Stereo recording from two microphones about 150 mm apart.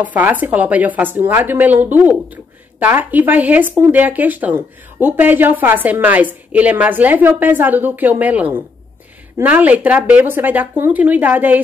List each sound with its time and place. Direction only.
0.0 s speech: 10° right (ahead or behind)